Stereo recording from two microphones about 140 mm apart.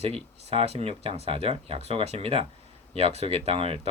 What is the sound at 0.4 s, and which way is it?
Speech, 45° right (ahead or behind).